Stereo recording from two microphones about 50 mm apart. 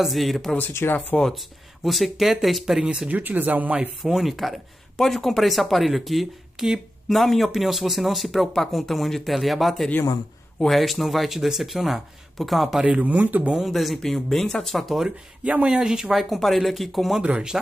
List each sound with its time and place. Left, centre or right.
0.0 s speech: centre
0.8 s speech: left
1.9 s speech: centre
3.1 s speech: right
4.0 s speech: centre
12.8 s speech: right
13.6 s speech: centre
15.4 s speech: right
15.7 s speech: centre
17.2 s speech: right